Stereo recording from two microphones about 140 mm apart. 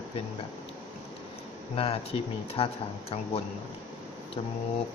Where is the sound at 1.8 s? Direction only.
40° left (ahead or behind).